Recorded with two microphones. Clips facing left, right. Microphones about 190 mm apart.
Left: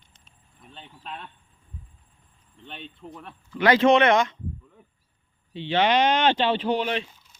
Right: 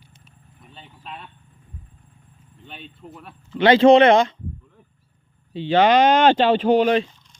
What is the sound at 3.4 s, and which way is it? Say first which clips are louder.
Speech: right 6 dB; 25° right (ahead or behind).